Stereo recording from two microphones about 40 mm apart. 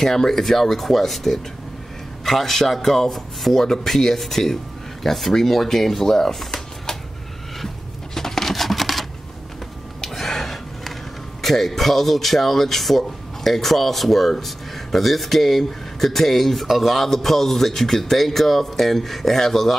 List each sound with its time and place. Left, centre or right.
0.0 s a man's voice: centre
7.6 s a sound: centre
10.0 s gasp: centre
11.4 s a man's voice: centre